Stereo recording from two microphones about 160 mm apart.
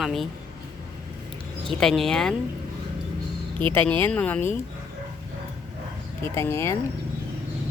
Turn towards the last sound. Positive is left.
turn(degrees=15)  # may be behind; listen again after turning